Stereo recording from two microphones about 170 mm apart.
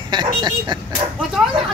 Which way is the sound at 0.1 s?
25° right (ahead or behind).